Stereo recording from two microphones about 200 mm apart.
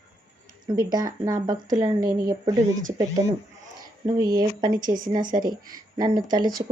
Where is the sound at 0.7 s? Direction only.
20° right (ahead or behind).